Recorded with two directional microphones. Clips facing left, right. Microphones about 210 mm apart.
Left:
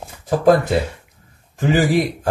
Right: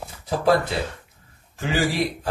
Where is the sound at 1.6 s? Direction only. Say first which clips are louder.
Left 7 dB; 50° left (ahead or behind).